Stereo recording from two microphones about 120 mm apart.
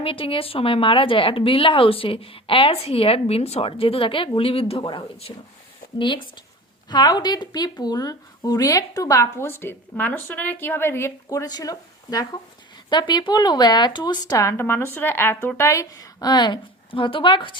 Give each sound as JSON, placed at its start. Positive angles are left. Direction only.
{"t": 0.0, "sound": "a woman's voice", "side_deg": 50}